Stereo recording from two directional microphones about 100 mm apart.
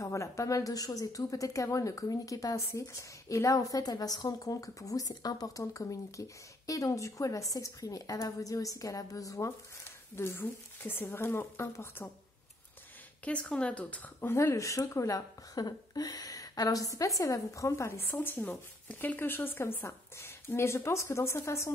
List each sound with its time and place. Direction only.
0.0 s speech: 30° left (ahead or behind)
10.1 s speech: 25° left (ahead or behind)
13.2 s speech: 10° left (ahead or behind)
14.2 s speech: 25° left (ahead or behind)